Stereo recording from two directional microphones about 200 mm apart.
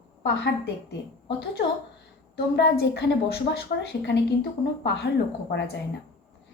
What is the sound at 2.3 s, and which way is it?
A woman's voice, 55° left (ahead or behind).